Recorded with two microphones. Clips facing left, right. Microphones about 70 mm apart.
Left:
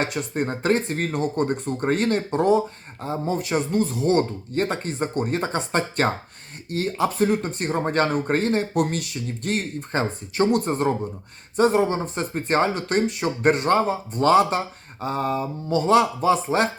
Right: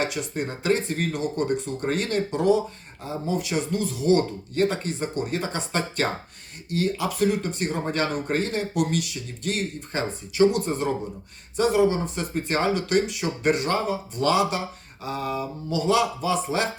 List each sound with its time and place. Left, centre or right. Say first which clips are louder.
0.0 s speech: left 2 dB; left